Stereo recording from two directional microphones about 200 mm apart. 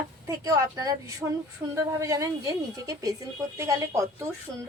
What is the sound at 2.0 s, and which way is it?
Speech, 15° right (ahead or behind).